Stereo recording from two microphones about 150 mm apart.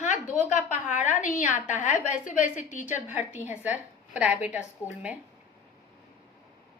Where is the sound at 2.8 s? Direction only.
10° right (ahead or behind).